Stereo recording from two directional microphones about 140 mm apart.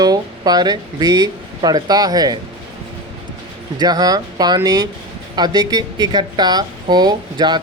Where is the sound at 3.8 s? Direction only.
30° right (ahead or behind).